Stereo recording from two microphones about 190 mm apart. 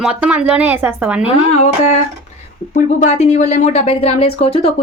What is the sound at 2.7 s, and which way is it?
Speech, 40° left (ahead or behind).